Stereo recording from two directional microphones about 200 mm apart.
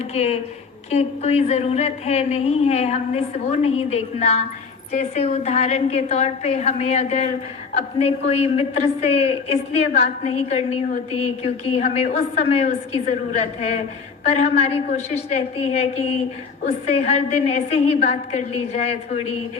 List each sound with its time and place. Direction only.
0.1 s a woman's voice: 30° left (ahead or behind)